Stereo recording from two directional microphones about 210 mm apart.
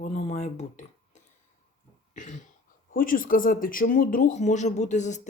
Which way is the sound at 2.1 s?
35° left (ahead or behind).